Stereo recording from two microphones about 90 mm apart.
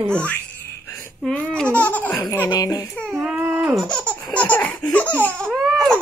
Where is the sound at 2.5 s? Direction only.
45° left (ahead or behind).